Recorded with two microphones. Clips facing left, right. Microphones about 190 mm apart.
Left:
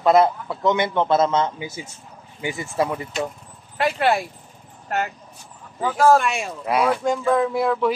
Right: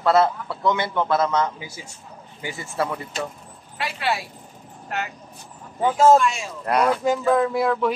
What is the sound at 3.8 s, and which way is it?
Speech, 50° left (ahead or behind).